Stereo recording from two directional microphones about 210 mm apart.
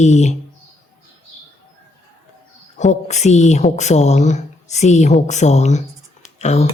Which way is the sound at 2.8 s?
35° left (ahead or behind).